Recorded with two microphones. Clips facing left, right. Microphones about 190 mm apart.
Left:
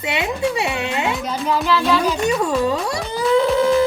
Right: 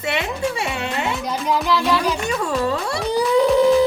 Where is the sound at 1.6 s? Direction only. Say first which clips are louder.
Left 2 dB; 15° right (ahead or behind).